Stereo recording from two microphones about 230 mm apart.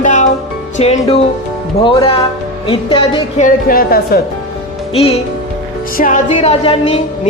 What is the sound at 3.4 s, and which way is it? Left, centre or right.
Speech, left.